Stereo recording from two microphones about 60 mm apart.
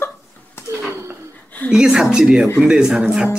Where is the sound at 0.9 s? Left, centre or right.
Right.